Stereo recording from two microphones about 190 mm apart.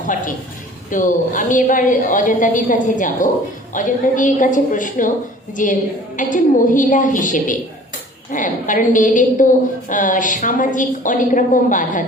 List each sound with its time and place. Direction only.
0.0 s a woman's voice: 45° left (ahead or behind)